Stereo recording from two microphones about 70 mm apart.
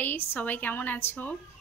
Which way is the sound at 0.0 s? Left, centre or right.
Left.